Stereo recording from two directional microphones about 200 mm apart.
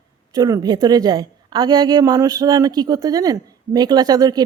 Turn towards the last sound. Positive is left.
turn(degrees=-20)  # may be behind; listen again after turning